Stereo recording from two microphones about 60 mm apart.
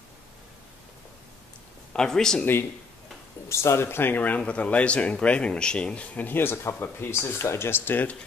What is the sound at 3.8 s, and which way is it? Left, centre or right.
Speech, left.